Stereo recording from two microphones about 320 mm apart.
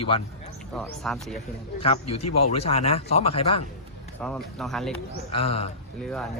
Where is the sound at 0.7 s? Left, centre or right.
Centre.